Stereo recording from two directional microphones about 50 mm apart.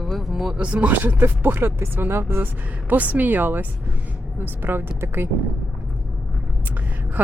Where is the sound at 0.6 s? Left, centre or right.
Right.